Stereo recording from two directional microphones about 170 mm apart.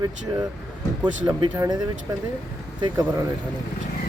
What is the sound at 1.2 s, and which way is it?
Speech, 20° right (ahead or behind).